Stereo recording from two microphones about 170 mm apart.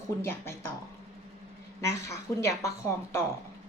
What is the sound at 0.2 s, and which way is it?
Speech, 15° left (ahead or behind).